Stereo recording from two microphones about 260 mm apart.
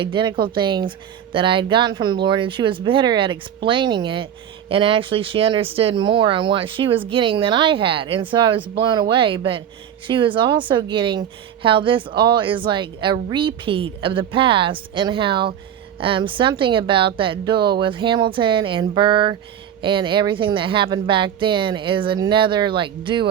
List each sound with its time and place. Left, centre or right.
0.0 s a woman's voice: centre